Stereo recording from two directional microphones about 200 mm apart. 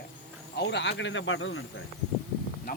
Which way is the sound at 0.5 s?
60° left (ahead or behind).